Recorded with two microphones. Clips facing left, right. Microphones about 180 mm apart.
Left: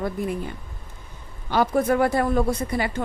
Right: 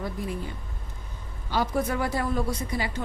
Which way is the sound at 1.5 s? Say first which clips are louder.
Left 6 dB; 55° left (ahead or behind).